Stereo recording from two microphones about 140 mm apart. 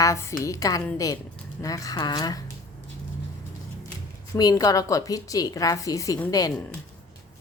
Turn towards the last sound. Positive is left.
turn(degrees=25)  # may be behind; listen again after turning